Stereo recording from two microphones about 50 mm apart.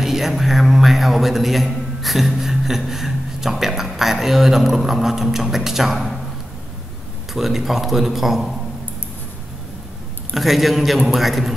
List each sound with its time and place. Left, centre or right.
0.0 s a man's voice: centre
7.3 s speech: centre
10.3 s speech: centre